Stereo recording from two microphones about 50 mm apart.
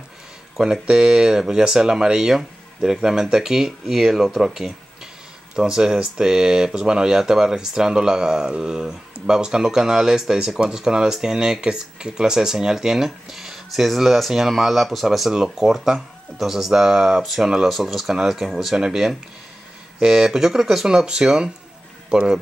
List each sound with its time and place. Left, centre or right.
0.6 s speech: centre